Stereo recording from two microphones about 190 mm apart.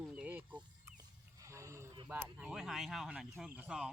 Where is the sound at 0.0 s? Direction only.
5° right (ahead or behind).